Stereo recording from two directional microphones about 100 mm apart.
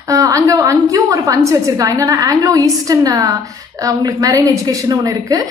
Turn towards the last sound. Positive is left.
turn(degrees=-35)  # may be behind; listen again after turning